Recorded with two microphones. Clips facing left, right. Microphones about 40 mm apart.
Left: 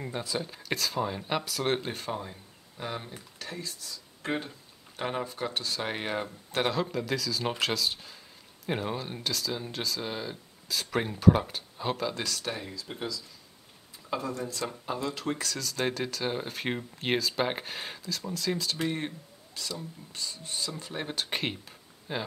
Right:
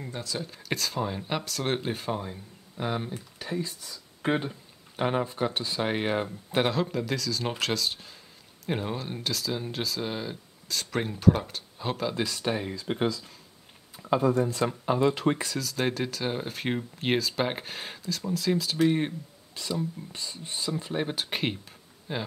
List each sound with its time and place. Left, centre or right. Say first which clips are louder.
0.0 s speech: left 1 dB; centre
12.2 s speech: right 5 dB; centre
12.8 s speech: right 11 dB; right
14.1 s speech: right 9 dB; right
15.5 s speech: right 2 dB; centre